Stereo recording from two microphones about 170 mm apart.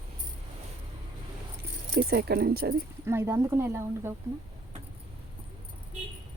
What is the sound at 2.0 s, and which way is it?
Speech, 65° right (ahead or behind).